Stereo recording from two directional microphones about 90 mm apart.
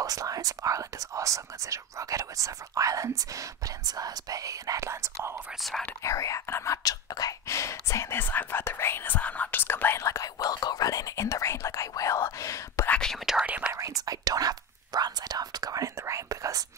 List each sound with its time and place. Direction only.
0.0 s speech: 40° right (ahead or behind)
5.6 s speech: centre (ahead or behind)
6.0 s speech: 35° left (ahead or behind)
10.0 s speech: 35° left (ahead or behind)
13.0 s speech: centre (ahead or behind)
13.5 s speech: 15° right (ahead or behind)
13.7 s speech: 40° right (ahead or behind)